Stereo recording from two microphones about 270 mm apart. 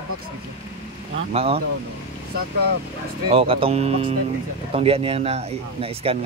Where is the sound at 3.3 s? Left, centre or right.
Right.